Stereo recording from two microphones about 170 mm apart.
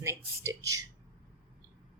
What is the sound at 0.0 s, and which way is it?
Speech, 15° right (ahead or behind).